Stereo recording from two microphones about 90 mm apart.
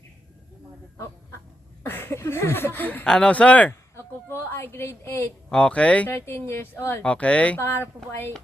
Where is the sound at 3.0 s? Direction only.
10° left (ahead or behind).